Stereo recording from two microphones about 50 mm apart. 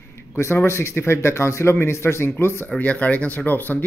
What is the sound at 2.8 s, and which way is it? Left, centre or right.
Speech, left.